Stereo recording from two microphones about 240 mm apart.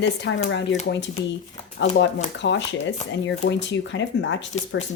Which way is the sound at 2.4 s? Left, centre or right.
Left.